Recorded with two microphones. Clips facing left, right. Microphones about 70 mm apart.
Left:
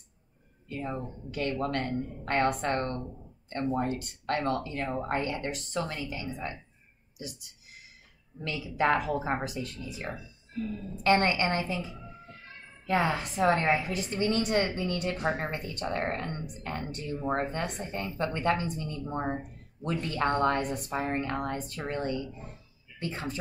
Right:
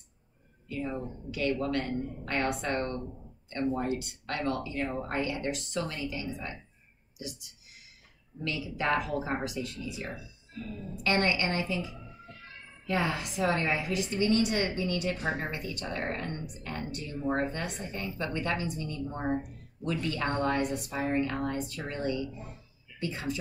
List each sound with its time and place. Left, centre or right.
0.7 s a woman's voice: left
8.5 s a woman's voice: left